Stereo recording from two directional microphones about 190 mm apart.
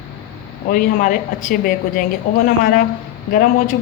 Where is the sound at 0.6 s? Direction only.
50° left (ahead or behind).